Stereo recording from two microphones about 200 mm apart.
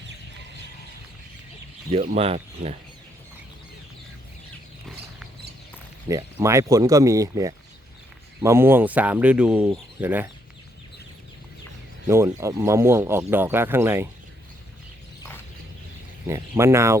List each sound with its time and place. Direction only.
1.9 s speech: 30° right (ahead or behind)
6.1 s speech: 15° right (ahead or behind)
12.0 s speech: 15° right (ahead or behind)
16.2 s speech: 15° right (ahead or behind)